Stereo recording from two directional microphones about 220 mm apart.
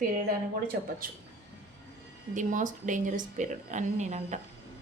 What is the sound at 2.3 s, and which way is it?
A woman's voice, 35° right (ahead or behind).